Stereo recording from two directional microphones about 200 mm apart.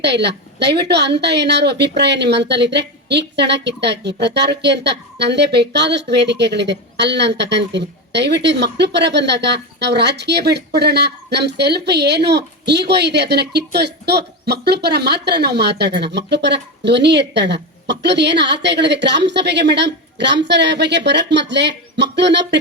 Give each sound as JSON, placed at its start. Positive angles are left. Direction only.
{"t": 0.0, "sound": "speech", "side_deg": -55}